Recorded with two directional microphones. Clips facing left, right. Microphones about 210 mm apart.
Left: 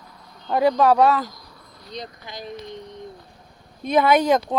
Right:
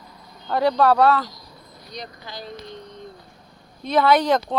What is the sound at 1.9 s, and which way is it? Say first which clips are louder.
Speech: left 2 dB; 25° left (ahead or behind).